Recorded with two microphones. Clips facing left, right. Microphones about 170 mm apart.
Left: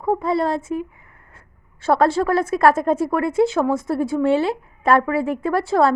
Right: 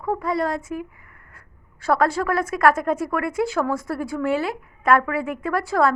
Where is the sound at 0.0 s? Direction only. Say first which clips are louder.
Left 4 dB; 25° left (ahead or behind).